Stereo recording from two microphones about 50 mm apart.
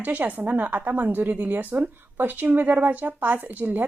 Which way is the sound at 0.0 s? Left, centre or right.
Right.